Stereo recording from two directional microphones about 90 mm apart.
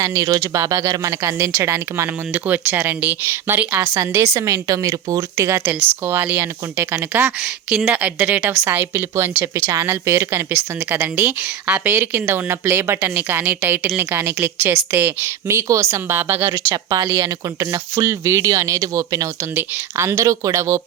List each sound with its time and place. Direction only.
0.0 s speech: 40° right (ahead or behind)
2.3 s a woman's voice: 20° right (ahead or behind)
4.0 s a woman's voice: 30° right (ahead or behind)
7.3 s a woman's voice: 5° right (ahead or behind); by 16.7 s 25° right (ahead or behind)
16.7 s speech: 40° right (ahead or behind)
19.5 s a woman's voice: 25° right (ahead or behind)
20.1 s speech: 35° right (ahead or behind)